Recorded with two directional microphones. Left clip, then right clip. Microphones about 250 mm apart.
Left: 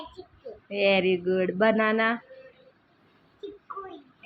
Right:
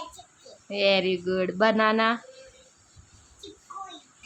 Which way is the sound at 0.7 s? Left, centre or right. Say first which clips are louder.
Even; centre.